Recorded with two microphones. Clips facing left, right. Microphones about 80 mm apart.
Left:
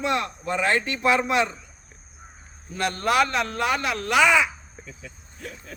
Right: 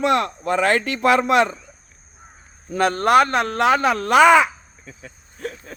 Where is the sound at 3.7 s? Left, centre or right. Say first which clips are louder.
Right 7 dB; right.